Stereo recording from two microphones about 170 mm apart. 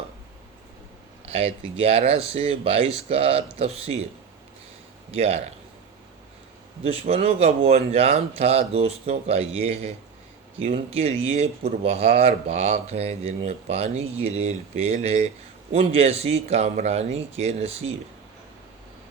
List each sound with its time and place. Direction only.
1.2 s speech: 35° right (ahead or behind)
5.1 s speech: 35° right (ahead or behind)
6.8 s speech: 35° right (ahead or behind)